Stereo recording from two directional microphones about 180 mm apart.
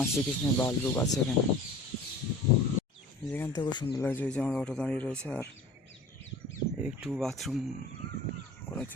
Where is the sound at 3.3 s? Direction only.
10° left (ahead or behind).